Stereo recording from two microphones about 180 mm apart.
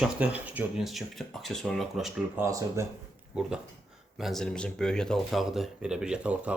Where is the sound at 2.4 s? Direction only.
15° right (ahead or behind).